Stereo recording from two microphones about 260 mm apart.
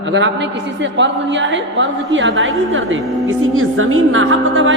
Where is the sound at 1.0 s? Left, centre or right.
Right.